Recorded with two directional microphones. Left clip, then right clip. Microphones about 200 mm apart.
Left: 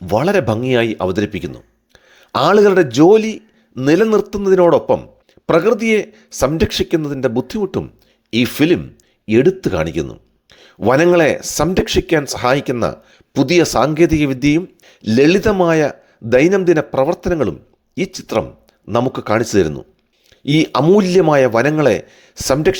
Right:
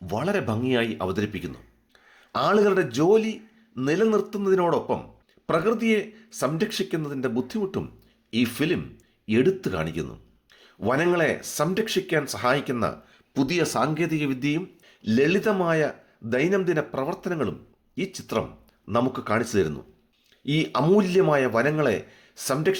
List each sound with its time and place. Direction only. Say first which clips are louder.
0.0 s speech: left 12 dB; 40° left (ahead or behind)